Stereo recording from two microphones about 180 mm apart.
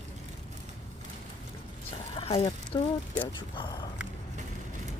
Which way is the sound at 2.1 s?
30° left (ahead or behind).